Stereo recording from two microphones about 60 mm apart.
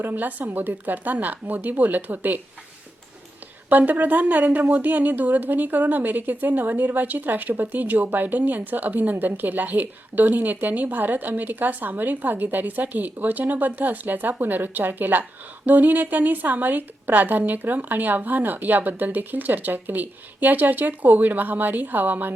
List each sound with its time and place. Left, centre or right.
0.0 s speech: right
3.7 s a woman's voice: right